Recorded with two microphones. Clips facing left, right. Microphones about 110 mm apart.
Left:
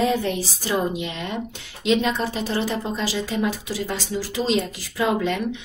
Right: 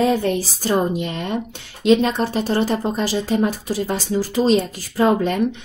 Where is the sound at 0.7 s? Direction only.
40° right (ahead or behind).